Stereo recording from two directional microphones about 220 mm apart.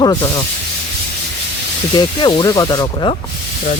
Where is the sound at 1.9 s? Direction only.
20° left (ahead or behind).